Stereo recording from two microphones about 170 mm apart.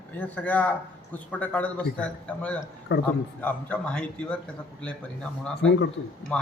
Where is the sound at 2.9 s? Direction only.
90° left.